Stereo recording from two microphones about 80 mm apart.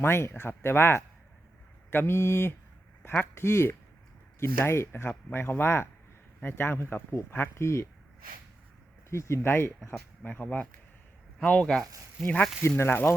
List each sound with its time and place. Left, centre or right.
0.0 s speech: left
9.0 s speech: left
12.2 s speech: centre
12.6 s speech: left